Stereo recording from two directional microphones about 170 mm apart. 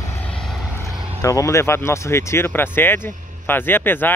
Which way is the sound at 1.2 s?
20° left (ahead or behind).